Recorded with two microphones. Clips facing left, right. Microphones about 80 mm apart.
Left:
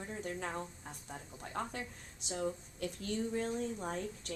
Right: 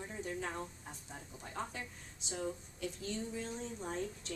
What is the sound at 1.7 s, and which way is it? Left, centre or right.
A woman's voice, left.